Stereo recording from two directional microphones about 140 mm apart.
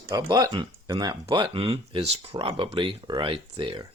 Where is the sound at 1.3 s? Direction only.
40° right (ahead or behind).